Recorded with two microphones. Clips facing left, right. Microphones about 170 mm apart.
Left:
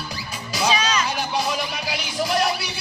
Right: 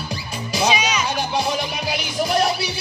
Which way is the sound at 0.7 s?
10° right (ahead or behind).